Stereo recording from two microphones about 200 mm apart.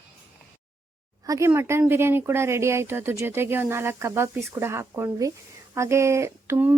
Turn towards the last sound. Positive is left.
turn(degrees=-10)  # may be behind; listen again after turning